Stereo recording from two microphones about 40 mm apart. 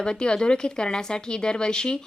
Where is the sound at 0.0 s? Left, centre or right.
Left.